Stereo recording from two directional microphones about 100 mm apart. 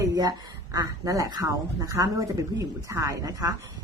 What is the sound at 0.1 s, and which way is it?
Speech, 40° right (ahead or behind).